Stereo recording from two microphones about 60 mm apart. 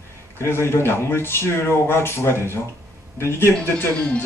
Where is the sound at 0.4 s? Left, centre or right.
Left.